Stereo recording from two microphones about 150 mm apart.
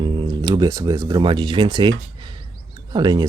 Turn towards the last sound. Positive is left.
turn(degrees=-30)  # may be behind; listen again after turning